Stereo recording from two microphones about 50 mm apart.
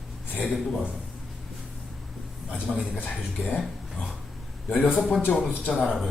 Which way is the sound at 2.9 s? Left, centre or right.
Left.